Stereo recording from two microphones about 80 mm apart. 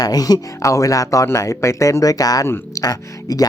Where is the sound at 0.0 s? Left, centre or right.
Left.